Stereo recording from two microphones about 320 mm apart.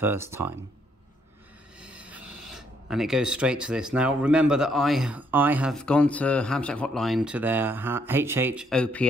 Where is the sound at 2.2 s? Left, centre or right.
Right.